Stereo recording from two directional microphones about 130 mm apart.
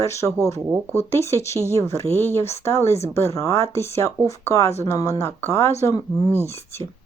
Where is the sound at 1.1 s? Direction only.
20° left (ahead or behind).